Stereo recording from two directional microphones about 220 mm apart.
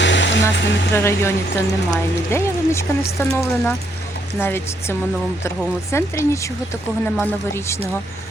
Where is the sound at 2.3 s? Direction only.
10° left (ahead or behind).